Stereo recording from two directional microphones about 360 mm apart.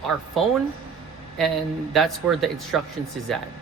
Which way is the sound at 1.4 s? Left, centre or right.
Centre.